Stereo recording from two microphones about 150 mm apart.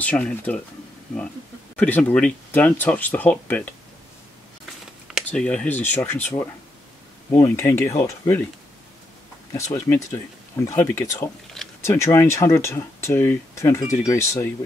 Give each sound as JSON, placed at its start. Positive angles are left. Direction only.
{"t": 0.0, "sound": "speech", "side_deg": 10}
{"t": 1.8, "sound": "speech", "side_deg": 10}
{"t": 5.0, "sound": "a sound", "side_deg": -5}
{"t": 5.4, "sound": "speech", "side_deg": 10}
{"t": 9.5, "sound": "speech", "side_deg": 20}